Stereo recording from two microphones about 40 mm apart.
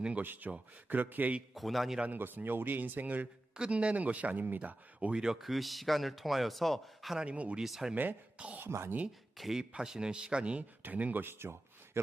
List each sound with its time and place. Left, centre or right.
0.2 s speech: right
1.5 s speech: centre
2.1 s speech: right
3.5 s speech: right
5.1 s a man's voice: centre
5.4 s speech: centre
7.3 s speech: right
7.6 s speech: centre
8.5 s speech: right
9.6 s a man's voice: centre
10.6 s speech: right
11.2 s speech: right
12.0 s speech: right